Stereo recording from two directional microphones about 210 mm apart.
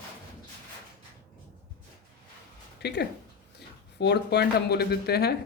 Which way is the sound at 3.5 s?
50° left (ahead or behind).